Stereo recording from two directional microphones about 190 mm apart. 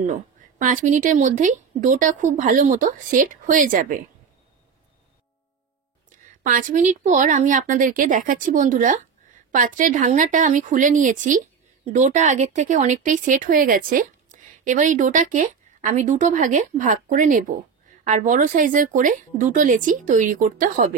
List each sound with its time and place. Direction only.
0.0 s speech: 40° right (ahead or behind)
6.0 s speech: 45° right (ahead or behind)